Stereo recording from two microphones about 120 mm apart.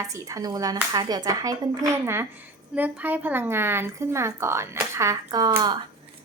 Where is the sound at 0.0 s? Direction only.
30° right (ahead or behind).